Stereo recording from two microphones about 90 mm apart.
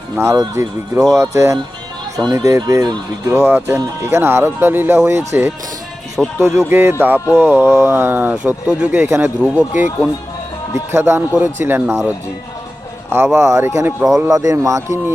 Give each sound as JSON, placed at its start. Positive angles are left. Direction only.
{"t": 0.2, "sound": "speech", "side_deg": -30}
{"t": 10.9, "sound": "speech", "side_deg": -30}